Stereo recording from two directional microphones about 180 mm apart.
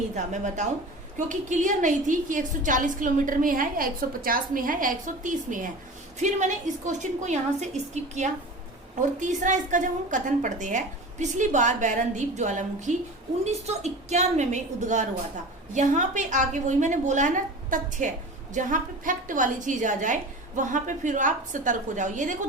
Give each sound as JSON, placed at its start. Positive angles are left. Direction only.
{"t": 0.2, "sound": "a woman's voice", "side_deg": -40}